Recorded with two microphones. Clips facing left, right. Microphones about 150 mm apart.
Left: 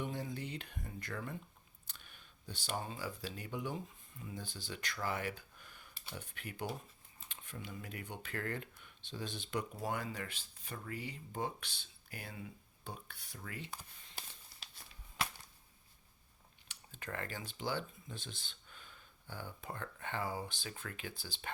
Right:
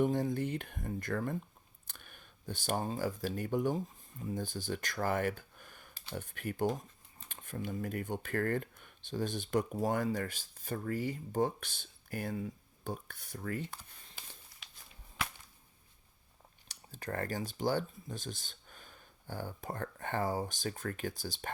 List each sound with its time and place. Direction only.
0.0 s speech: 45° right (ahead or behind)
14.5 s a sound: 30° left (ahead or behind)
16.6 s speech: 40° right (ahead or behind)